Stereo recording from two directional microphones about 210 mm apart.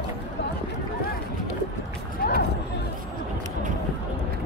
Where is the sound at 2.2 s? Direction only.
45° left (ahead or behind).